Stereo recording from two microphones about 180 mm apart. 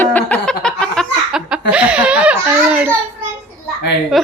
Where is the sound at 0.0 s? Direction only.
10° left (ahead or behind).